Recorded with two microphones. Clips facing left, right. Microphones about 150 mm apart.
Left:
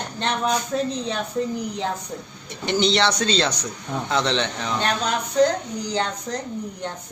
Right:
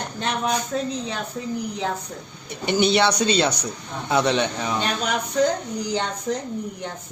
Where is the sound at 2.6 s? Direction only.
10° right (ahead or behind).